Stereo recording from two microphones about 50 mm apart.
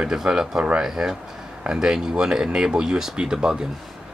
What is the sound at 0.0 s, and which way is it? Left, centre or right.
Speech, centre.